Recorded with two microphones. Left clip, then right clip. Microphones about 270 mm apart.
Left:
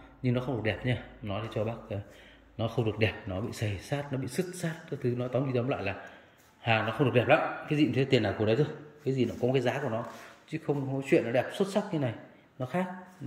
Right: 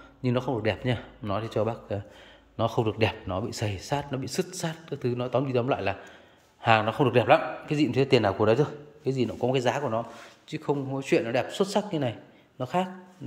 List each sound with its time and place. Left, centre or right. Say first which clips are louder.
0.2 s a man's voice: right 4 dB; centre